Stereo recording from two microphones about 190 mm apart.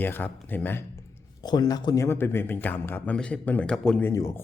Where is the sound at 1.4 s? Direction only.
20° left (ahead or behind).